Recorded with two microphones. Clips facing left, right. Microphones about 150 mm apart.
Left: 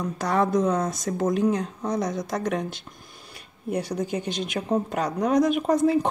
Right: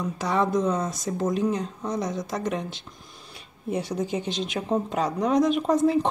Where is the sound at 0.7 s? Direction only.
60° left (ahead or behind).